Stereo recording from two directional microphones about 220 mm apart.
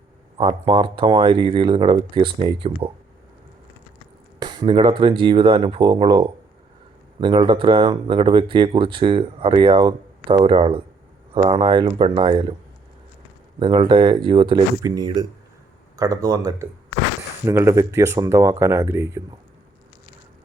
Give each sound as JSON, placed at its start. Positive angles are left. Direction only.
{"t": 0.3, "sound": "speech", "side_deg": -20}
{"t": 4.4, "sound": "speech", "side_deg": -20}
{"t": 13.6, "sound": "speech", "side_deg": -20}